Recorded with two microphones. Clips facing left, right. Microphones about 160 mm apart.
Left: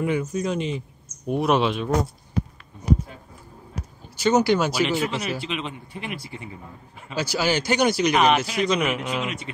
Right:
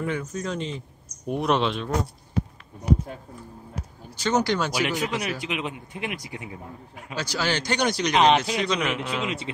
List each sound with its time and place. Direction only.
0.0 s speech: 10° left (ahead or behind)
4.2 s speech: 10° left (ahead or behind)
4.7 s speech: 15° right (ahead or behind)
7.2 s speech: 10° left (ahead or behind)
8.1 s speech: 25° right (ahead or behind)
8.6 s a man's voice: 5° left (ahead or behind)
9.2 s speech: 30° right (ahead or behind)